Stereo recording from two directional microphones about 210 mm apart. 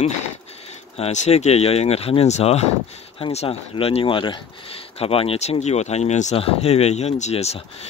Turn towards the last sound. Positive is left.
turn(degrees=30)  # may be behind; listen again after turning